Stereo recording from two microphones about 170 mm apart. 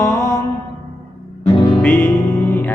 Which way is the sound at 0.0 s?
15° left (ahead or behind).